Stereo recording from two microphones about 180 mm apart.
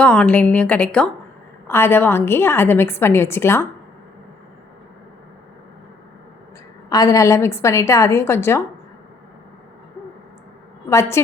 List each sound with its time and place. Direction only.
0.0 s a woman's voice: 5° left (ahead or behind)
6.9 s a woman's voice: 20° left (ahead or behind)
10.8 s a woman's voice: 15° left (ahead or behind)